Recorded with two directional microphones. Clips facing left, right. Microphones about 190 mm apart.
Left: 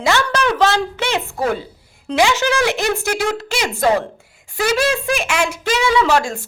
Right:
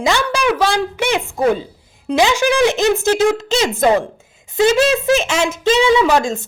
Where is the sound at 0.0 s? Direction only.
15° right (ahead or behind).